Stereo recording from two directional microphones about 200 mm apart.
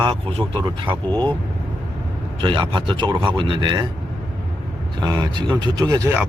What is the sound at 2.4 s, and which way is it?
Speech, 20° right (ahead or behind).